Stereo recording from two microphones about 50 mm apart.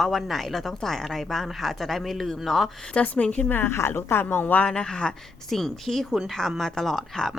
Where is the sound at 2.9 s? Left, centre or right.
Left.